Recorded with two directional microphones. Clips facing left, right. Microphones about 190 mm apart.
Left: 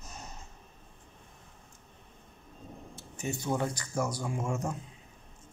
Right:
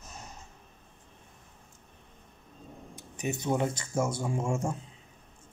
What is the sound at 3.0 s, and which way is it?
Speech, 15° right (ahead or behind).